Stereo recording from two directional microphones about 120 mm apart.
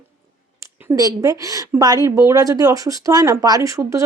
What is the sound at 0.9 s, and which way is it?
Speech, 30° right (ahead or behind).